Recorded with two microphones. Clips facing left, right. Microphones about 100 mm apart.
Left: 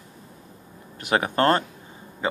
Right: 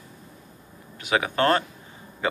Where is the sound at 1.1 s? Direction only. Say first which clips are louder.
Left 1 dB; 40° left (ahead or behind).